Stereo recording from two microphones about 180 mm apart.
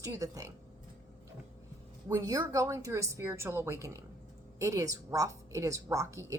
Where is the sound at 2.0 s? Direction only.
20° right (ahead or behind).